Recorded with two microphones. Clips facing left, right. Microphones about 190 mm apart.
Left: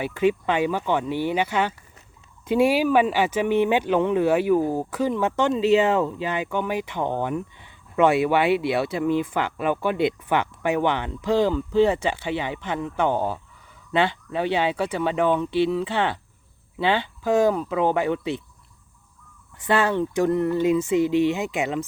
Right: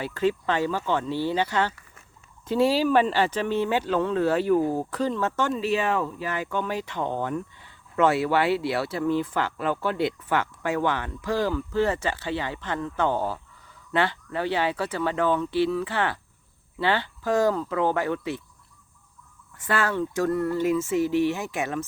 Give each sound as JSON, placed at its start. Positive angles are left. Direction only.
{"t": 0.0, "sound": "speech", "side_deg": 15}
{"t": 19.5, "sound": "speech", "side_deg": 20}